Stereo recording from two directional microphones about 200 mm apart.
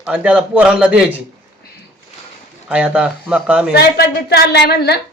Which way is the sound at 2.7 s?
5° right (ahead or behind).